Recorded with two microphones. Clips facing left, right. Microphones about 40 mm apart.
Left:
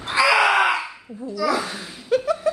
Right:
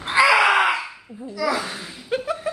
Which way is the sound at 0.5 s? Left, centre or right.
Centre.